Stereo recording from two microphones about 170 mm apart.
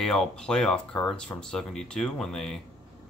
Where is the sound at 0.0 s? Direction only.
Centre (ahead or behind).